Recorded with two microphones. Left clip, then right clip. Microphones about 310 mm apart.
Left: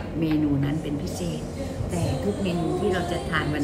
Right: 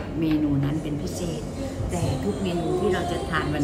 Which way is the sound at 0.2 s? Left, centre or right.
Centre.